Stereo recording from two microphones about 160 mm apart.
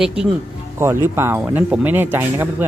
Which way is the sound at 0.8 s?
15° right (ahead or behind).